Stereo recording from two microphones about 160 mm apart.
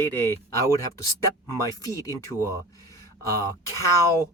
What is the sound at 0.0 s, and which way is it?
Speech, 15° left (ahead or behind).